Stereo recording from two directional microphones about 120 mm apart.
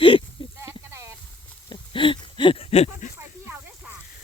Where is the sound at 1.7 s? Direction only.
45° left (ahead or behind); by 3.1 s 60° left (ahead or behind).